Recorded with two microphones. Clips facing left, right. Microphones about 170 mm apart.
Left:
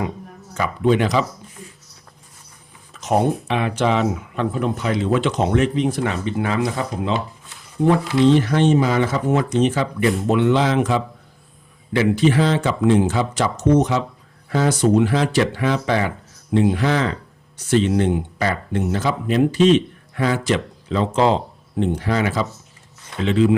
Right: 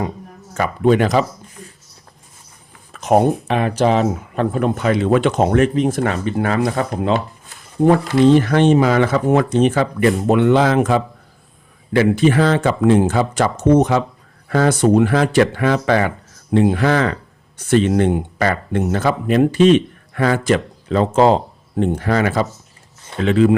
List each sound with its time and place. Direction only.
0.5 s speech: 50° right (ahead or behind)
2.9 s a sound: 55° right (ahead or behind)
3.4 s speech: 45° right (ahead or behind)
4.4 s speech: 55° right (ahead or behind)